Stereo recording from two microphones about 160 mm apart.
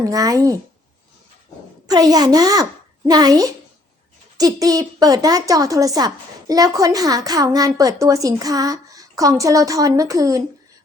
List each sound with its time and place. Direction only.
0.0 s a woman's voice: 20° right (ahead or behind)
1.9 s a woman's voice: 25° right (ahead or behind)